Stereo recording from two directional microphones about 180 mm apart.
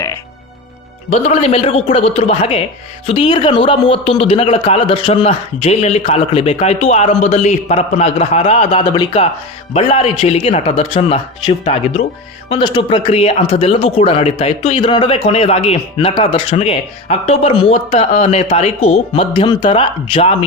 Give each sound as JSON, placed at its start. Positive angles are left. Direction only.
{"t": 1.1, "sound": "a man's voice", "side_deg": 35}